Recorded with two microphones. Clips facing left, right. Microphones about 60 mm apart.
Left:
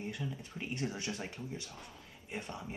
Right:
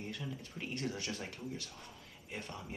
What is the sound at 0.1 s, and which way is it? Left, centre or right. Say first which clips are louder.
Speech: left 2 dB; centre.